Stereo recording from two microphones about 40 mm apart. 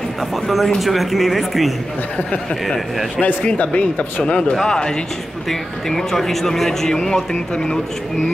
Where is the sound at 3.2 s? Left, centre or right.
Left.